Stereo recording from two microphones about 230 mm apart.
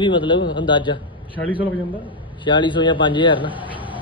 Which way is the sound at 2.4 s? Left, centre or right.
Left.